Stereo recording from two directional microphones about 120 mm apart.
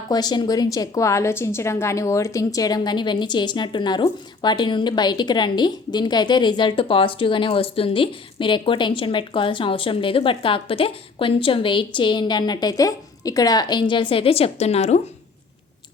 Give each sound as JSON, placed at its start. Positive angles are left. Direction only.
{"t": 0.1, "sound": "a woman's voice", "side_deg": 35}